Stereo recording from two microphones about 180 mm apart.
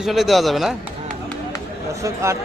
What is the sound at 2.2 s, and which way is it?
Speech, 15° right (ahead or behind).